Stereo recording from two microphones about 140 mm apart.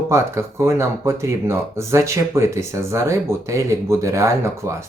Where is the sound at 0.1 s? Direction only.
20° right (ahead or behind).